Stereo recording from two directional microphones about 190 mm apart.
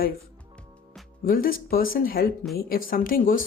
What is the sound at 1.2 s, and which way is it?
Speech, 50° left (ahead or behind).